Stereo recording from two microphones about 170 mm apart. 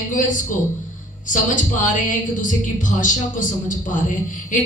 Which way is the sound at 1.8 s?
50° left (ahead or behind).